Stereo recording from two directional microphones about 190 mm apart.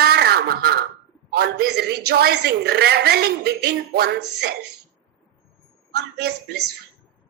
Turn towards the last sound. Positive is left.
turn(degrees=-60)  # may be behind; listen again after turning